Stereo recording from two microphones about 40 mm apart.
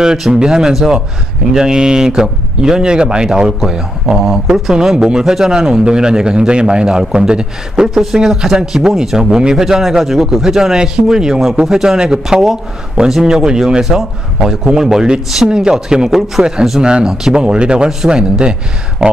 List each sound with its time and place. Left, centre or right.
0.0 s a man's voice: centre
18.4 s a man's voice: right